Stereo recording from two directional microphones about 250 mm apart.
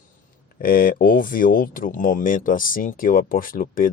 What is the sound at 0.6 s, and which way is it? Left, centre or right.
Speech, left.